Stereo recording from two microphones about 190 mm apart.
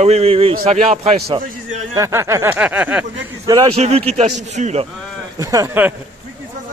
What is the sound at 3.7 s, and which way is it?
A man's voice, 35° right (ahead or behind).